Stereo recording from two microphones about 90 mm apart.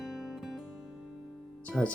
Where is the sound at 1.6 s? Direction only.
15° left (ahead or behind).